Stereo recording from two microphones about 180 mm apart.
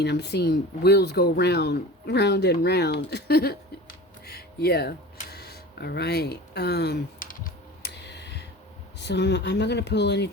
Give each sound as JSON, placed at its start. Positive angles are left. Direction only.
{"t": 0.0, "sound": "speech", "side_deg": 70}
{"t": 5.3, "sound": "a sound", "side_deg": 65}
{"t": 9.0, "sound": "speech", "side_deg": 70}